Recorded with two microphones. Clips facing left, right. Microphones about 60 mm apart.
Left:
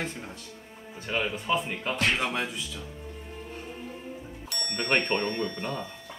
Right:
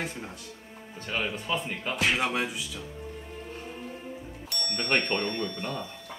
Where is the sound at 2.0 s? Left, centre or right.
Centre.